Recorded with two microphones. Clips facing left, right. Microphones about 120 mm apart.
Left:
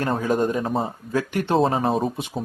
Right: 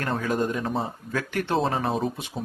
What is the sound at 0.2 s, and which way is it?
Speech, 25° left (ahead or behind).